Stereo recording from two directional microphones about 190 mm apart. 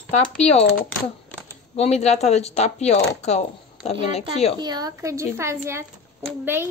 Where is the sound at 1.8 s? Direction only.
35° left (ahead or behind).